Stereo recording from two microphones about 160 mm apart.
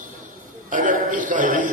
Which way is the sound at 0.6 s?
55° right (ahead or behind).